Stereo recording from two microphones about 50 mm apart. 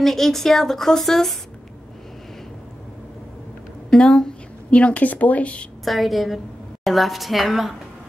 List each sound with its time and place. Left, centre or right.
0.0 s speech: centre
3.9 s a woman's voice: centre
4.6 s a woman's voice: left
5.9 s a woman's voice: centre